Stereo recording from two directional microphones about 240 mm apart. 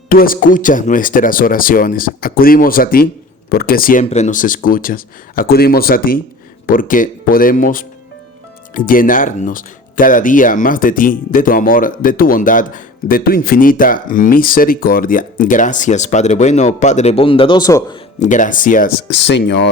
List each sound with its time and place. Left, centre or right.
0.1 s speech: left; by 17.8 s centre
18.2 s speech: left